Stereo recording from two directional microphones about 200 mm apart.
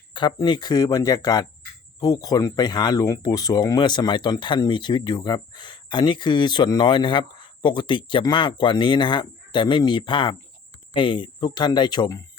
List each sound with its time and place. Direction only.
0.1 s speech: 25° left (ahead or behind)